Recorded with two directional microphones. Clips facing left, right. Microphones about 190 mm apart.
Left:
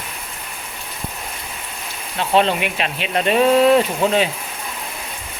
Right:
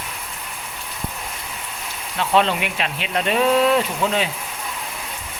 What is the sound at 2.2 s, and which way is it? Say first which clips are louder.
Speech: left 2 dB; 25° left (ahead or behind).